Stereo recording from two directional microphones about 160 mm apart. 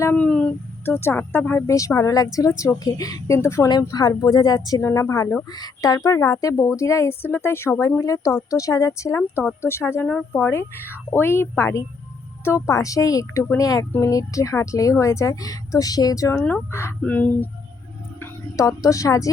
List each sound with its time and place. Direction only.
0.0 s a woman's voice: 10° left (ahead or behind)